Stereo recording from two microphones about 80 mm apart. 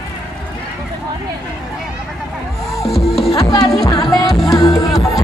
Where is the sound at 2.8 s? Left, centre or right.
Centre.